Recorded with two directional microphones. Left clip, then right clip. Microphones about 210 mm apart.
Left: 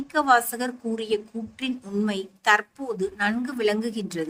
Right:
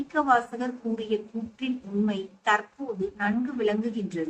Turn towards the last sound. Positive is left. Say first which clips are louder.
# left 2 dB
turn(degrees=60)  # may be behind; listen again after turning